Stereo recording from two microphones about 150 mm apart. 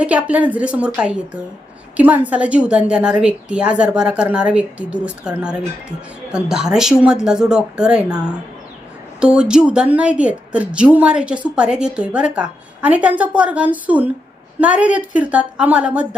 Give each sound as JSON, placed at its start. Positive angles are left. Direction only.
{"t": 0.0, "sound": "a woman's voice", "side_deg": -10}